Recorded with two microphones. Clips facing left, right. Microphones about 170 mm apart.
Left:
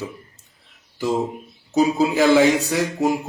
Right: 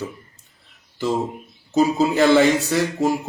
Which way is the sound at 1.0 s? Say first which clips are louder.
Even; 15° left (ahead or behind).